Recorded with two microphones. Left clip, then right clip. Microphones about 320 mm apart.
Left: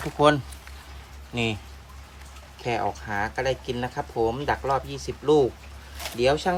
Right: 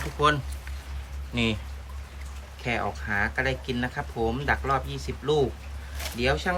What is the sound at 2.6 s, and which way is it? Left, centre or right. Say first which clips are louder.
Speech: left 2 dB; centre.